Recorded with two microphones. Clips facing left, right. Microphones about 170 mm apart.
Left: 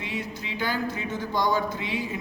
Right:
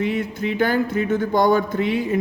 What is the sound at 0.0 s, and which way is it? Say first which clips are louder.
Speech: right 11 dB; 55° right (ahead or behind).